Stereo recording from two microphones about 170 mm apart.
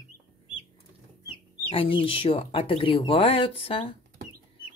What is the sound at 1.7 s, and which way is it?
Speech, 30° left (ahead or behind).